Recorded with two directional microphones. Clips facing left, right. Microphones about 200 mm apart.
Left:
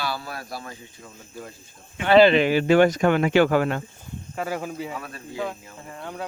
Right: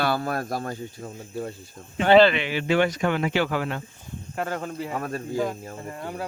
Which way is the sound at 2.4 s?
40° left (ahead or behind).